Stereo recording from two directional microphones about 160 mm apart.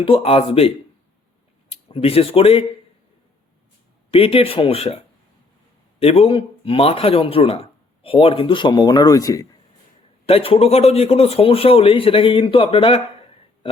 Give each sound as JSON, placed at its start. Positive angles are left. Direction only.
{"t": 0.0, "sound": "speech", "side_deg": 35}
{"t": 1.7, "sound": "speech", "side_deg": 35}
{"t": 4.1, "sound": "speech", "side_deg": 35}
{"t": 6.0, "sound": "speech", "side_deg": 35}
{"t": 10.2, "sound": "speech", "side_deg": 35}